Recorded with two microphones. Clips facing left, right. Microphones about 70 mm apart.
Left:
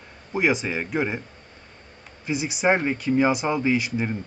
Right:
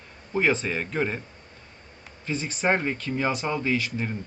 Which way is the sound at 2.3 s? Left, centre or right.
Centre.